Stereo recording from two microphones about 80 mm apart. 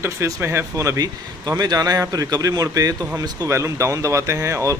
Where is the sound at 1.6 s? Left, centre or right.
Right.